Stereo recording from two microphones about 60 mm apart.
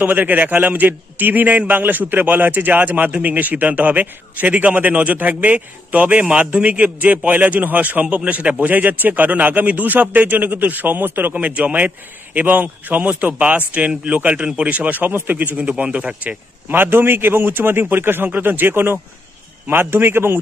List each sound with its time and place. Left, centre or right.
0.0 s a man's voice: right